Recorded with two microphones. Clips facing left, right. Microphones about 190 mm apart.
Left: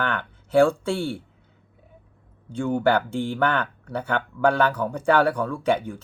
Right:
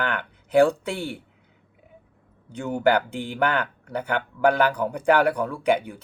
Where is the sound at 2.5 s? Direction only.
15° right (ahead or behind).